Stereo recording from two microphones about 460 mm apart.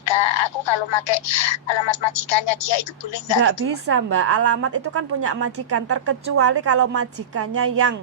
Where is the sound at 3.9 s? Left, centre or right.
Right.